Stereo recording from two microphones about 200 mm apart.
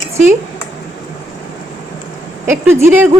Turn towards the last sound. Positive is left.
turn(degrees=-10)  # may be behind; listen again after turning